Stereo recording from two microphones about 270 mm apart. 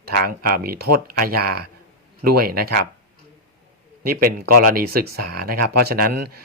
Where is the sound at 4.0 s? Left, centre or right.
Right.